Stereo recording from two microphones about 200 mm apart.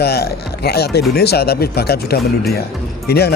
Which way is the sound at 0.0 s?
55° left (ahead or behind).